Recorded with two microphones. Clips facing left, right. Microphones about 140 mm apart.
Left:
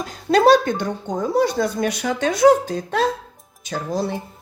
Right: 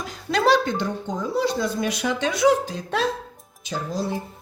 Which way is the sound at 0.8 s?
50° left (ahead or behind).